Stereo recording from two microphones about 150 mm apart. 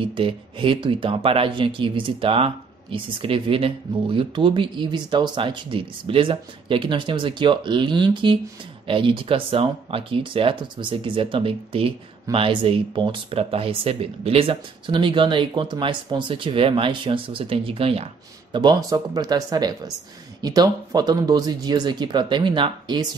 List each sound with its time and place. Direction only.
0.0 s speech: 35° right (ahead or behind)